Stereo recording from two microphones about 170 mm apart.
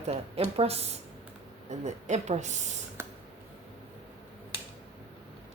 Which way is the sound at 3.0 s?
15° right (ahead or behind).